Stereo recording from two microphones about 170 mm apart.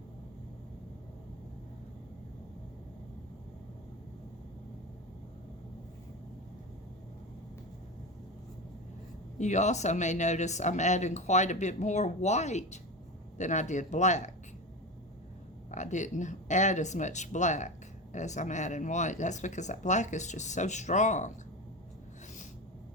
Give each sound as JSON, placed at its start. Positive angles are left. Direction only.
{"t": 9.4, "sound": "speech", "side_deg": 45}
{"t": 15.7, "sound": "speech", "side_deg": 45}